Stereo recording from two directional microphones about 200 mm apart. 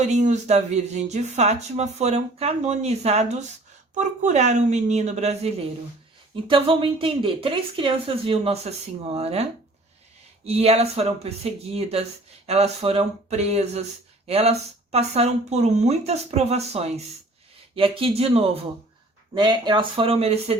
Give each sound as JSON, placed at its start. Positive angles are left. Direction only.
{"t": 0.0, "sound": "a woman's voice", "side_deg": -35}